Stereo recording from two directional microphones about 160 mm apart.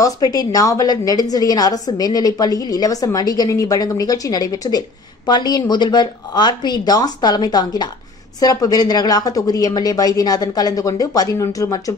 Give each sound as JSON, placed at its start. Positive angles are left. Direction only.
{"t": 0.0, "sound": "a woman's voice", "side_deg": 25}